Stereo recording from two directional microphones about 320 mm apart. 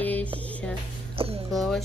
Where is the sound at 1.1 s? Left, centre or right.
Centre.